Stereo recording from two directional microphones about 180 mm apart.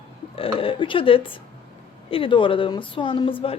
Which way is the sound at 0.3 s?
30° left (ahead or behind).